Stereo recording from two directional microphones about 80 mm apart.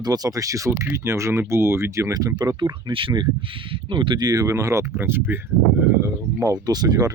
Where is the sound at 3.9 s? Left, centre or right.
Right.